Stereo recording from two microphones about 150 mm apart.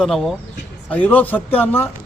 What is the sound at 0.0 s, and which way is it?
A man's voice, centre (ahead or behind).